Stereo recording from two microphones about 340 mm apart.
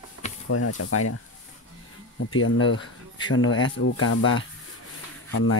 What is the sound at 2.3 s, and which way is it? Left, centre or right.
Speech, left.